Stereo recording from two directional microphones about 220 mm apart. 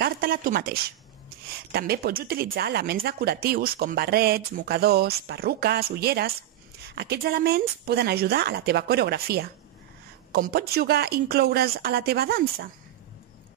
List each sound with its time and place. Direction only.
0.0 s speech: 40° right (ahead or behind)